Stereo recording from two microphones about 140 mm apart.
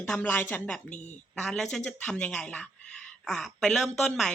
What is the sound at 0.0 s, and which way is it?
A woman's voice, 15° left (ahead or behind).